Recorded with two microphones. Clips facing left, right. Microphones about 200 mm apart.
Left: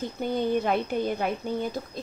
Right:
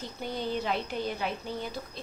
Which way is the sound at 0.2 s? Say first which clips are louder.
Left 7 dB; 50° left (ahead or behind).